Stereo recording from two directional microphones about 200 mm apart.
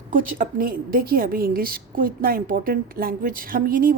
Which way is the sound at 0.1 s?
45° right (ahead or behind).